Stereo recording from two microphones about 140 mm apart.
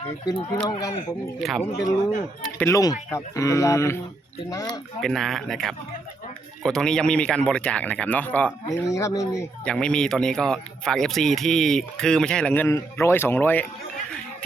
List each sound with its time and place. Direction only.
0.3 s speech: 35° left (ahead or behind)
1.4 s speech: centre (ahead or behind)
1.6 s speech: 55° left (ahead or behind)
2.6 s speech: 20° left (ahead or behind)
4.9 s speech: centre (ahead or behind)
8.6 s speech: 20° left (ahead or behind)
9.6 s speech: 5° left (ahead or behind)
12.6 s speech: 20° left (ahead or behind)